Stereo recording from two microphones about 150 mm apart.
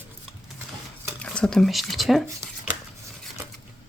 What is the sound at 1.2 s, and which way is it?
Speech, 5° left (ahead or behind).